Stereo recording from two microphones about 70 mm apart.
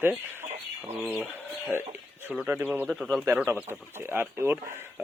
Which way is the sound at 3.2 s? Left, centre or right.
Right.